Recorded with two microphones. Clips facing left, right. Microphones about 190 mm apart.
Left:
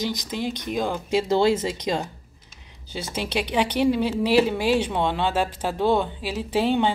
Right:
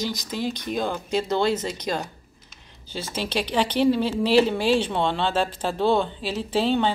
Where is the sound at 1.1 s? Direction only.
25° left (ahead or behind).